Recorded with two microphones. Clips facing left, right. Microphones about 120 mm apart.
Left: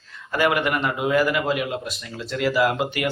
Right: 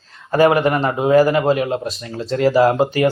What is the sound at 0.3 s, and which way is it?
Speech, 35° right (ahead or behind).